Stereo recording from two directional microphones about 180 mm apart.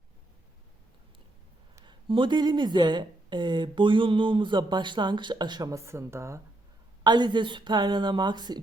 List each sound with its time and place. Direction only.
1.7 s speech: 25° right (ahead or behind)